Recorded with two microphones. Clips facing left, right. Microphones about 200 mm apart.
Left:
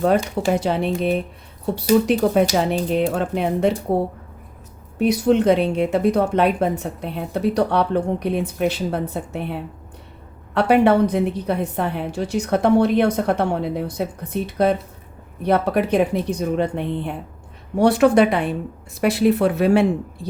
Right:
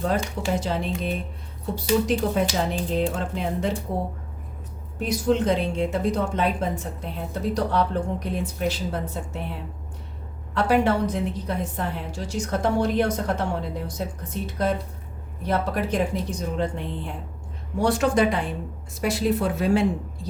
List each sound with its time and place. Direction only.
0.5 s a woman's voice: 60° left (ahead or behind)
4.9 s a woman's voice: 65° left (ahead or behind)